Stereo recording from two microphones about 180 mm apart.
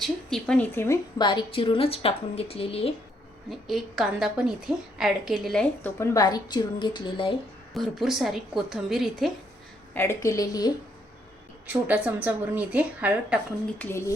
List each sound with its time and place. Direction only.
0.0 s speech: centre (ahead or behind)
1.2 s a woman's voice: 25° left (ahead or behind)
3.5 s a woman's voice: centre (ahead or behind)
6.0 s a woman's voice: 15° left (ahead or behind)
7.7 s a woman's voice: centre (ahead or behind)
9.9 s speech: 15° left (ahead or behind)
11.6 s speech: 10° right (ahead or behind)